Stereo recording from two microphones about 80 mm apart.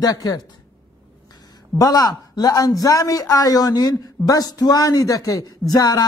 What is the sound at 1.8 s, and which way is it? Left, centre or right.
A man's voice, left.